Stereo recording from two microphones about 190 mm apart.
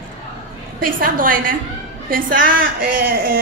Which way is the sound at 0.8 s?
50° right (ahead or behind).